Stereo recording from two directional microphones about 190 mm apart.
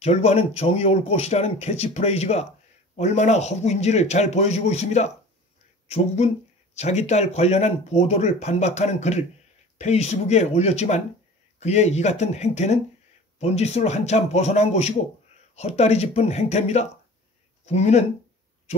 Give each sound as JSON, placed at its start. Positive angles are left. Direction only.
{"t": 0.0, "sound": "speech", "side_deg": 35}